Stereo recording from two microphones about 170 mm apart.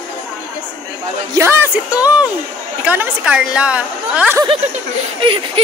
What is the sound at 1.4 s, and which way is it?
Speech, 20° right (ahead or behind).